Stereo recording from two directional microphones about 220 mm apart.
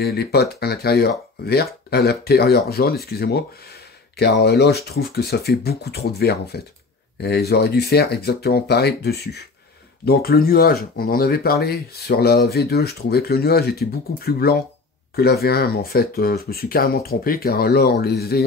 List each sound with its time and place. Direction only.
0.0 s speech: 45° left (ahead or behind)